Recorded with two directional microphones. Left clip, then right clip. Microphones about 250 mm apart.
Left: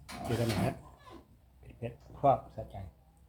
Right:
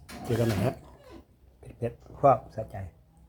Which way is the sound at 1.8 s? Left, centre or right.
Right.